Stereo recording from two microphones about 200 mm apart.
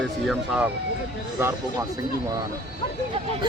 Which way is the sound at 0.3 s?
5° right (ahead or behind).